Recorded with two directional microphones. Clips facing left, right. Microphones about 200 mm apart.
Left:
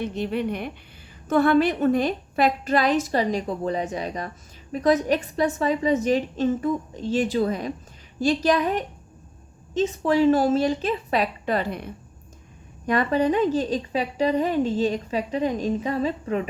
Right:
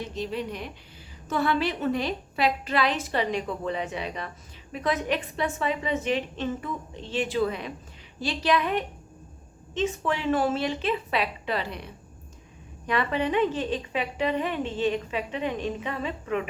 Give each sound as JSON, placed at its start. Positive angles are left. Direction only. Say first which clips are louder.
{"t": 0.0, "sound": "a woman's voice", "louder": "left 5 dB", "side_deg": 60}
{"t": 12.9, "sound": "a woman's voice", "louder": "left 5 dB", "side_deg": 40}